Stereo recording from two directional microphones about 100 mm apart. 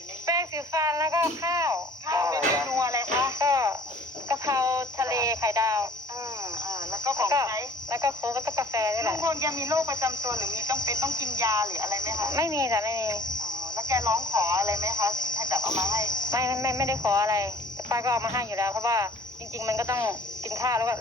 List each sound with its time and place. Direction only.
0.3 s a sound: 35° right (ahead or behind)
3.2 s music: 30° right (ahead or behind)
4.3 s a sound: 30° right (ahead or behind)
6.7 s speech: 30° right (ahead or behind)
13.1 s a sound: 45° left (ahead or behind)
13.7 s cricket: 30° right (ahead or behind)
14.3 s speech: 30° right (ahead or behind)
15.1 s cricket: 45° left (ahead or behind)
15.4 s speech: 30° right (ahead or behind)